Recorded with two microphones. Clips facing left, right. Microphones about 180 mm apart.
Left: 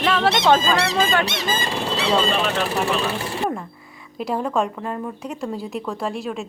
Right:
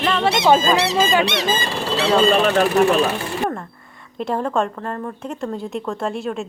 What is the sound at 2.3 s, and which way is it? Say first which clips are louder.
Speech: right 6 dB; 45° right (ahead or behind).